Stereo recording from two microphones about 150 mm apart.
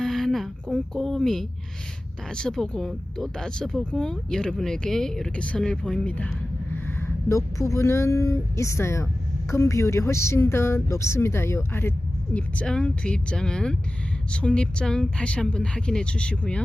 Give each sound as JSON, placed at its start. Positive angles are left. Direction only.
{"t": 0.0, "sound": "a sound", "side_deg": 5}
{"t": 2.3, "sound": "speech", "side_deg": 5}
{"t": 7.3, "sound": "speech", "side_deg": 20}